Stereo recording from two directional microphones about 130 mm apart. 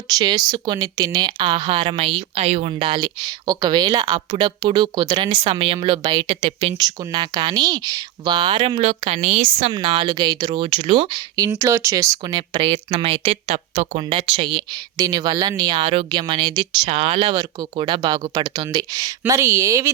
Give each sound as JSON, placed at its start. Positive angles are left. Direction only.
{"t": 0.1, "sound": "speech", "side_deg": -30}
{"t": 5.5, "sound": "speech", "side_deg": -45}
{"t": 6.7, "sound": "speech", "side_deg": -30}
{"t": 11.3, "sound": "a woman's voice", "side_deg": -25}